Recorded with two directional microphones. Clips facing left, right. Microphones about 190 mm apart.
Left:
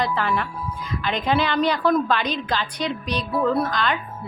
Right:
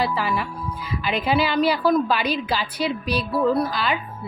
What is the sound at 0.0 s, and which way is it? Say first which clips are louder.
A woman's voice: even; 5° right (ahead or behind).